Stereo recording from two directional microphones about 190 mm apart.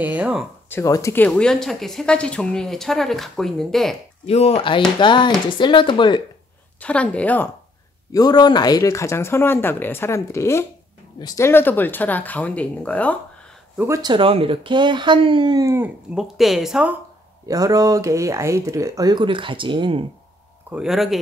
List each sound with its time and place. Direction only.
0.0 s a sound: 5° right (ahead or behind)
0.7 s speech: 15° left (ahead or behind)
4.3 s speech: 30° left (ahead or behind)
6.8 s speech: 5° left (ahead or behind)
8.1 s speech: 20° left (ahead or behind)
13.7 s speech: 15° right (ahead or behind)
16.2 s speech: centre (ahead or behind)
17.5 s speech: 20° right (ahead or behind)
20.7 s speech: centre (ahead or behind)